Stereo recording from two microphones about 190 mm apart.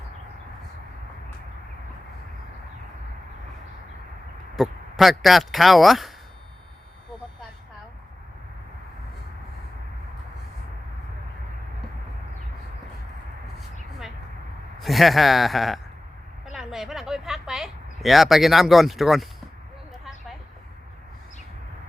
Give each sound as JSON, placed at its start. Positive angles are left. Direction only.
{"t": 4.5, "sound": "speech", "side_deg": 0}
{"t": 14.8, "sound": "speech", "side_deg": 0}
{"t": 16.6, "sound": "a sound", "side_deg": 0}